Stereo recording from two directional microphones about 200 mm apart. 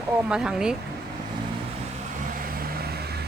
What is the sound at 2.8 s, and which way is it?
Vehicle, 50° right (ahead or behind).